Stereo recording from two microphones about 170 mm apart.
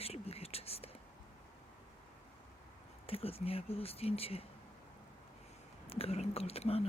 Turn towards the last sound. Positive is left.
turn(degrees=35)  # may be behind; listen again after turning